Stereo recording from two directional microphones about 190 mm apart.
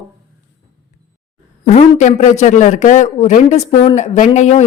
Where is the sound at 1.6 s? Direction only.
35° left (ahead or behind).